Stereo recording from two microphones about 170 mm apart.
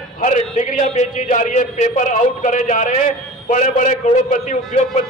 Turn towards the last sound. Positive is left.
turn(degrees=50)  # may be behind; listen again after turning